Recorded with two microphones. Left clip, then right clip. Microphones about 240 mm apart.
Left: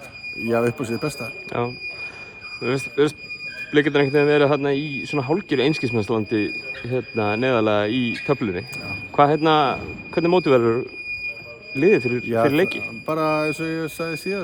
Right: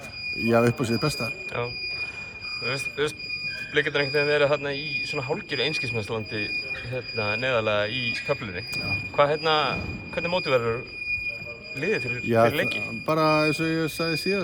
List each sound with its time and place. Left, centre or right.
0.4 s speech: centre
2.6 s speech: left
11.8 s speech: left
12.8 s speech: centre